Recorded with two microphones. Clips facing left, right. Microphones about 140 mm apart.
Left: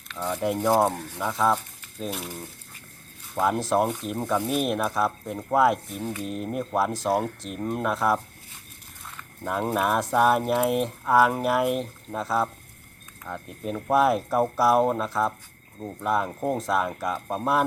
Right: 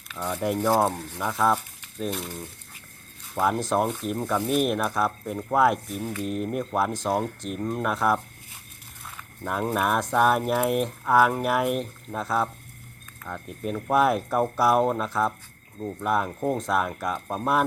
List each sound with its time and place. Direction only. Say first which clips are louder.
0.1 s speech: even; 5° right (ahead or behind)
6.0 s speech: even; 15° left (ahead or behind)
6.2 s speech: right 2 dB; centre (ahead or behind)
9.4 s speech: even; centre (ahead or behind)